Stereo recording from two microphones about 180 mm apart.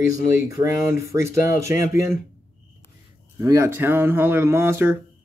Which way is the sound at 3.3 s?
15° right (ahead or behind).